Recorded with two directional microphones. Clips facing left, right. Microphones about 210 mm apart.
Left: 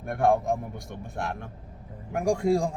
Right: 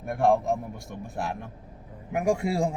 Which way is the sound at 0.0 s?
Centre (ahead or behind).